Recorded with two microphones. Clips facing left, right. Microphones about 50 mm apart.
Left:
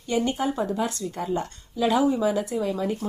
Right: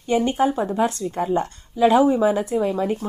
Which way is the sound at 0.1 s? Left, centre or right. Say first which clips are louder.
Right 5 dB; right.